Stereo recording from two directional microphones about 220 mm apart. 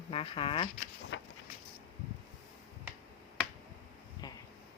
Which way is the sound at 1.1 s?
60° left (ahead or behind).